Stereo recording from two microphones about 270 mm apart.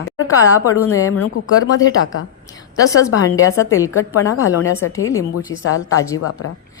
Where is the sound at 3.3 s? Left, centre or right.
Left.